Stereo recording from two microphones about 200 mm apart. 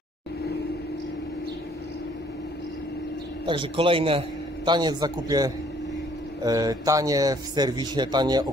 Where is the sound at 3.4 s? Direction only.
25° right (ahead or behind).